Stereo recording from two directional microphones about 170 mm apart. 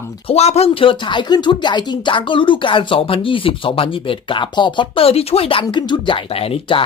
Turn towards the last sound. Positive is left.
turn(degrees=35)  # may be behind; listen again after turning